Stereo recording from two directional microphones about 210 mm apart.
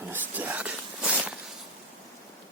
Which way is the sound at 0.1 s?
5° right (ahead or behind).